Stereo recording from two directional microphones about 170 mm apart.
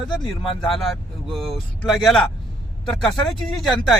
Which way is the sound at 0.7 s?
Centre (ahead or behind).